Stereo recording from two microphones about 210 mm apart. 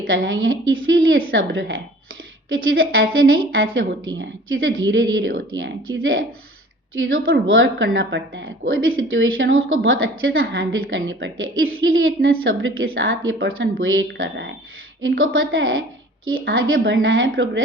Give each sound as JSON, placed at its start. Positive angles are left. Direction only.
{"t": 0.1, "sound": "a woman's voice", "side_deg": -65}
{"t": 8.6, "sound": "a woman's voice", "side_deg": -70}
{"t": 10.4, "sound": "a woman's voice", "side_deg": -45}
{"t": 10.9, "sound": "a woman's voice", "side_deg": -65}
{"t": 15.2, "sound": "a woman's voice", "side_deg": -70}